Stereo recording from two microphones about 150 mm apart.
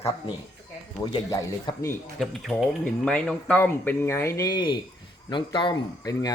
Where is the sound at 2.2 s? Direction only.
Centre (ahead or behind); by 6.3 s 30° left (ahead or behind).